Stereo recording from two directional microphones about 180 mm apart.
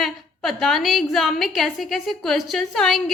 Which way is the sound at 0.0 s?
Centre (ahead or behind).